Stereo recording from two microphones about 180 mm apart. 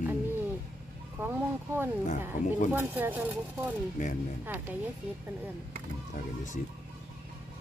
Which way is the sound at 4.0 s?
45° left (ahead or behind).